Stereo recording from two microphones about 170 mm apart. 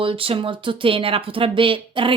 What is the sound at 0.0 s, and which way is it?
Speech, 30° right (ahead or behind).